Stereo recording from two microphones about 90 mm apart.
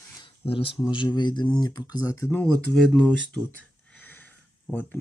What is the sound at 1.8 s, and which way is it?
Mantra, 40° left (ahead or behind).